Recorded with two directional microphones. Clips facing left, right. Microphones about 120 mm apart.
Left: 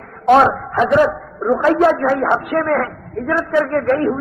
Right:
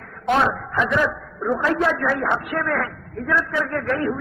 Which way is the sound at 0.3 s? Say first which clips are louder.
Left 8 dB; 50° left (ahead or behind).